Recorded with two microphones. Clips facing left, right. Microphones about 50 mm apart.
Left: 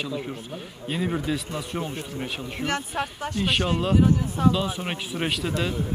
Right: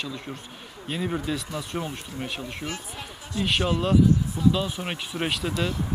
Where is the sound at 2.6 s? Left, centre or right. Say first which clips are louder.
Left 8 dB; left.